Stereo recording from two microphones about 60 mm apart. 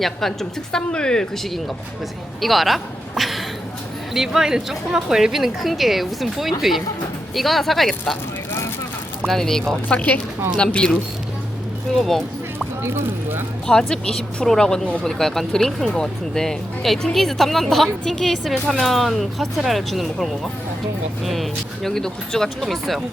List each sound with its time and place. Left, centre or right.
0.0 s speech: centre
2.4 s speech: centre
9.2 s speech: centre
9.9 s speech: left
10.6 s speech: centre
11.9 s speech: centre
12.5 s a sound: right
13.7 s speech: centre